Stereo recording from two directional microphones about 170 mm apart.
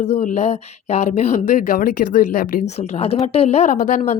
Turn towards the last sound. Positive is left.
turn(degrees=45)  # may be behind; listen again after turning